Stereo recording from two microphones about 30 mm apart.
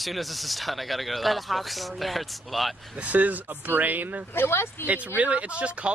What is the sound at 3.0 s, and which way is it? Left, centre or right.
Speech, right.